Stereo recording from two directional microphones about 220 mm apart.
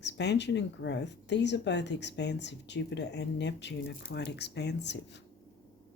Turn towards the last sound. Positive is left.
turn(degrees=50)  # may be behind; listen again after turning